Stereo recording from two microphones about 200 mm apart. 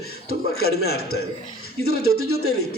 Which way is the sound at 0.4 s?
90° left.